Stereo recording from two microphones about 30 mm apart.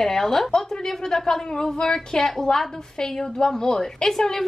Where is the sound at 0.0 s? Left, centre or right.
Centre.